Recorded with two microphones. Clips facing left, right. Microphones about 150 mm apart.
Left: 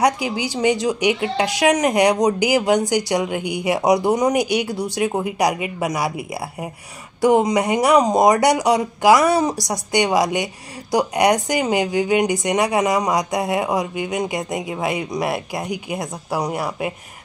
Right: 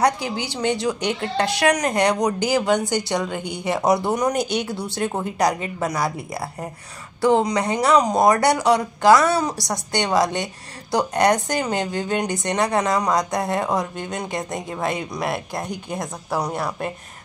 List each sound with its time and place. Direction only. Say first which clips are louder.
0.6 s a woman's voice: left 4 dB; 15° left (ahead or behind)